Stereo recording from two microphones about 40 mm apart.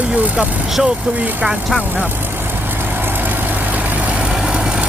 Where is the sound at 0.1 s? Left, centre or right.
Right.